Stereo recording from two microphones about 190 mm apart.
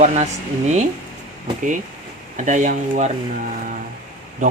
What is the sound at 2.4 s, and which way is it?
Speech, 40° right (ahead or behind).